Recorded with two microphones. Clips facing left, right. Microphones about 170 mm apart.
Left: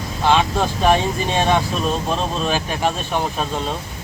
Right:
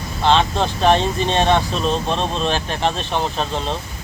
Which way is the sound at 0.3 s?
10° left (ahead or behind).